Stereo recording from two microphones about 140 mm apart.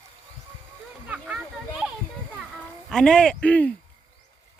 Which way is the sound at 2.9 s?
5° left (ahead or behind).